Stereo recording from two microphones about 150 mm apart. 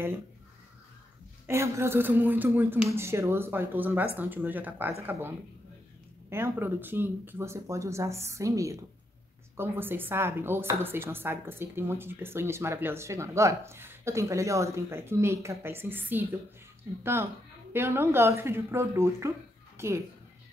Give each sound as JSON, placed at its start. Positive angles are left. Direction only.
{"t": 1.5, "sound": "a woman's voice", "side_deg": -15}
{"t": 6.3, "sound": "a woman's voice", "side_deg": -15}